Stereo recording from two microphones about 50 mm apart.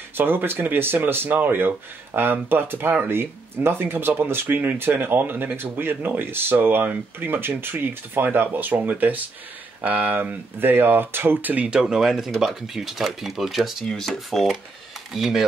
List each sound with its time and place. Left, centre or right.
0.2 s speech: right
11.7 s speech: centre
13.8 s speech: centre